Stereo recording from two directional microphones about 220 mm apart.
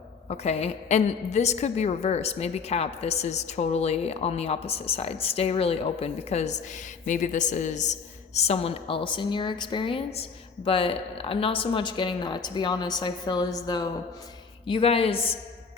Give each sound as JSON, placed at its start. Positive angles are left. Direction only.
{"t": 0.3, "sound": "a woman's voice", "side_deg": 30}